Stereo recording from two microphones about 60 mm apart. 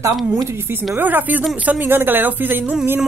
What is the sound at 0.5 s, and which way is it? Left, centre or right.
Speech, right.